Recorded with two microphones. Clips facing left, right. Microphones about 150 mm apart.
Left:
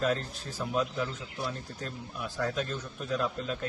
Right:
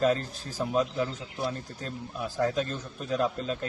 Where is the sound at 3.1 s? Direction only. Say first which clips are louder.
Right 3 dB; 35° right (ahead or behind).